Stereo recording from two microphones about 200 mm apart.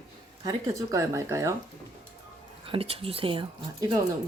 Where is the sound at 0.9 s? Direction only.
15° right (ahead or behind).